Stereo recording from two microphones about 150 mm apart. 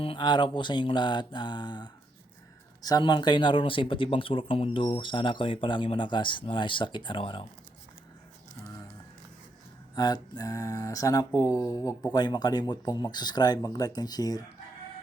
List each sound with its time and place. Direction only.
0.0 s speech: 35° left (ahead or behind)
9.9 s speech: 25° left (ahead or behind)